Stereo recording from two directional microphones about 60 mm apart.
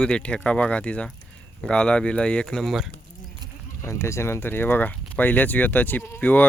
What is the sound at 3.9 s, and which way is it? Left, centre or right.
Speech, left.